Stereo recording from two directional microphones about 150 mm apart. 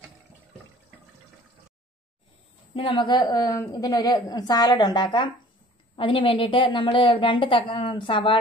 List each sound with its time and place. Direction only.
2.7 s a woman's voice: 35° left (ahead or behind)